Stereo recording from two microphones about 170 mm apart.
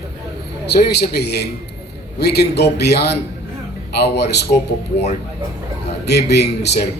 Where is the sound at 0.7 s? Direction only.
75° left (ahead or behind).